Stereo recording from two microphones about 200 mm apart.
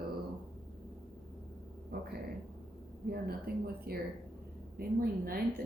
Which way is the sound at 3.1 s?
50° right (ahead or behind).